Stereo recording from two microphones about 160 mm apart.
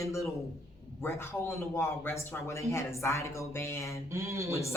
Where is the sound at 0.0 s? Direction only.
20° left (ahead or behind).